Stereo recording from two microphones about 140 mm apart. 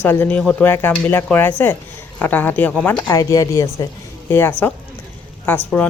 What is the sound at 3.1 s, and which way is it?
Speech, 25° left (ahead or behind).